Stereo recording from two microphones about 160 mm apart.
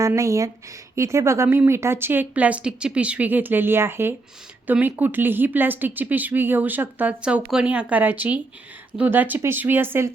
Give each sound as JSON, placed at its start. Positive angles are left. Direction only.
{"t": 0.0, "sound": "speech", "side_deg": -20}